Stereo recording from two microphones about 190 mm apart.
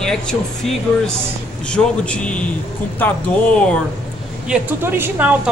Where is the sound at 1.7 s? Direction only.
5° left (ahead or behind).